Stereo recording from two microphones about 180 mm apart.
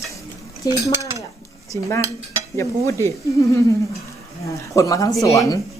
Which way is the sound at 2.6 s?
15° left (ahead or behind).